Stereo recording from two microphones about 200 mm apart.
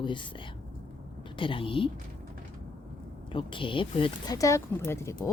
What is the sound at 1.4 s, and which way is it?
Speech, 25° left (ahead or behind).